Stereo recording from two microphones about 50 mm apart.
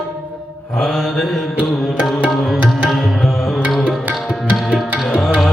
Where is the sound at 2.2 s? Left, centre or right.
Right.